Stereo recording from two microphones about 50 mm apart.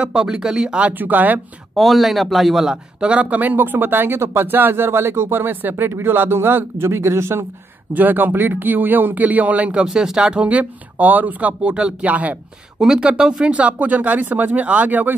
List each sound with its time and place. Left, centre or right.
0.0 s speech: centre
0.9 s speech: right
1.8 s a man's voice: centre
3.0 s speech: right
4.2 s speech: right
5.9 s a man's voice: right
7.9 s speech: right
9.8 s speech: centre
10.5 s speech: right
11.6 s speech: right
12.7 s speech: centre
13.5 s speech: right